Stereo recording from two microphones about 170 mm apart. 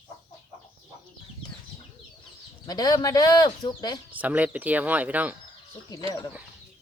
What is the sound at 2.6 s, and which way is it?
Speech, 25° left (ahead or behind).